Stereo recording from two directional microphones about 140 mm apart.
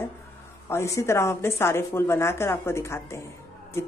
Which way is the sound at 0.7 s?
20° left (ahead or behind).